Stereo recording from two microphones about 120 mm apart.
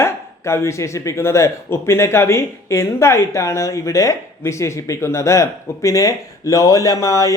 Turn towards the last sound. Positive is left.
turn(degrees=30)  # may be behind; listen again after turning